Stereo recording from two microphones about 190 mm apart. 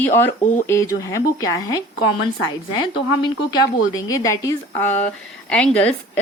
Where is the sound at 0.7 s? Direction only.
15° left (ahead or behind).